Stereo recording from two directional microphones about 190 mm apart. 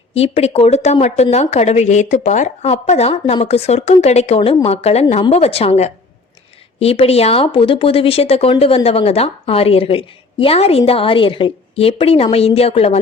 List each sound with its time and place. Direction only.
0.1 s speech: 35° left (ahead or behind)